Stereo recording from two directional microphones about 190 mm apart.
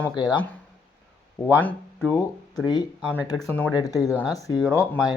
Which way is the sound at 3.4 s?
10° left (ahead or behind).